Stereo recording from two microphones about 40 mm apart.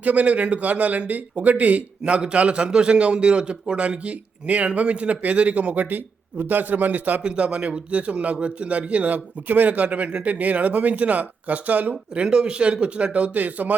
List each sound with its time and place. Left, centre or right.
0.0 s speech: right
7.2 s speech: right
12.2 s speech: right